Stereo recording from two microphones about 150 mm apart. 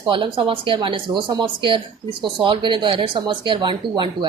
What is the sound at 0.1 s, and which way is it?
A woman's voice, 35° right (ahead or behind).